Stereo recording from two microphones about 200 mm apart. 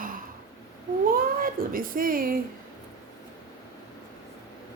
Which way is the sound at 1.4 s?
45° right (ahead or behind).